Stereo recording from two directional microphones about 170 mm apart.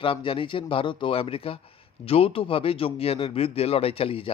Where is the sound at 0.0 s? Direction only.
30° left (ahead or behind).